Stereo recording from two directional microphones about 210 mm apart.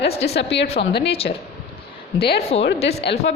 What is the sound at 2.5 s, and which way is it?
Speech, 30° left (ahead or behind).